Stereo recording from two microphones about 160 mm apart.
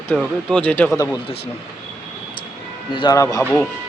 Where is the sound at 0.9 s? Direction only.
20° left (ahead or behind).